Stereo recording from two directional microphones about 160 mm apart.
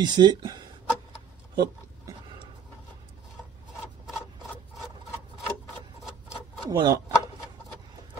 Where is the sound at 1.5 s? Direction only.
25° right (ahead or behind).